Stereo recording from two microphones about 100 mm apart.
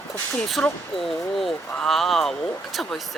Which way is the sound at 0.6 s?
15° left (ahead or behind).